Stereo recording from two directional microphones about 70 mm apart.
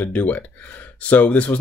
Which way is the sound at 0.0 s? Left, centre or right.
Left.